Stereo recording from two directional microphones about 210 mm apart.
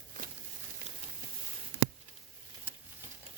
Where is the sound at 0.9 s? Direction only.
30° right (ahead or behind).